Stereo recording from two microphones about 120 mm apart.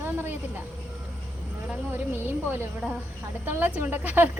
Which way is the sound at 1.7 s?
15° right (ahead or behind).